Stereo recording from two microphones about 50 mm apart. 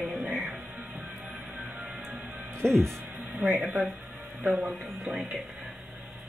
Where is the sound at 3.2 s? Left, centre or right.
Right.